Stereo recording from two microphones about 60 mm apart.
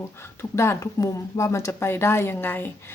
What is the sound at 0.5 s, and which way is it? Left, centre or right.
Speech, left.